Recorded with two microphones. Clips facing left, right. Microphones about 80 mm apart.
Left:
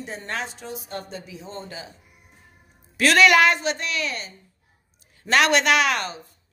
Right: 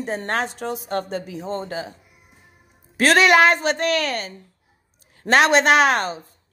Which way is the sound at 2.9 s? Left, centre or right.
Right.